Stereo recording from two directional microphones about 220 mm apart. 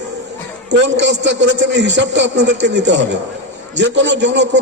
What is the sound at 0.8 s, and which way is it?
A man's voice, 50° right (ahead or behind).